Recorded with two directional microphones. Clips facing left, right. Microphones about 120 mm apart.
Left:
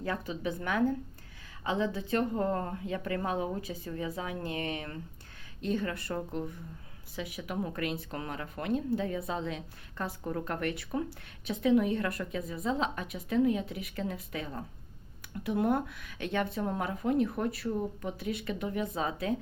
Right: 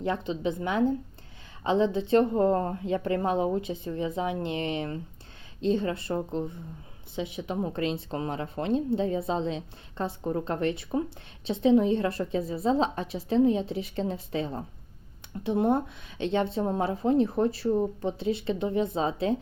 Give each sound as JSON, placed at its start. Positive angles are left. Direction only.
{"t": 0.0, "sound": "speech", "side_deg": -25}